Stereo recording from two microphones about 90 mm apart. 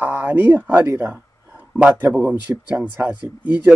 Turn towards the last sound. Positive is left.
turn(degrees=-15)  # may be behind; listen again after turning